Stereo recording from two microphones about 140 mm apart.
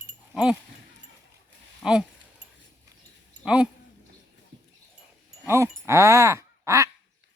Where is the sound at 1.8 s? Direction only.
5° right (ahead or behind).